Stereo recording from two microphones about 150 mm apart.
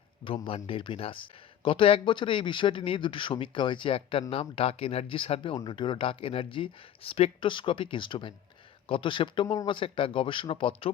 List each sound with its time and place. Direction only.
0.3 s speech: 35° left (ahead or behind)